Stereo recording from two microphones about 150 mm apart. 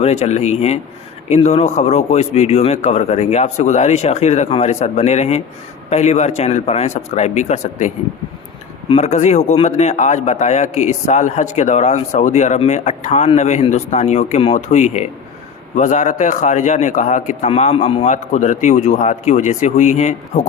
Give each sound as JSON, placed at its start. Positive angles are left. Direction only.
{"t": 0.0, "sound": "a man's voice", "side_deg": 45}